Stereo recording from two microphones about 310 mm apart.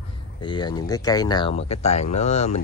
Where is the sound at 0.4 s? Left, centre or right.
Centre.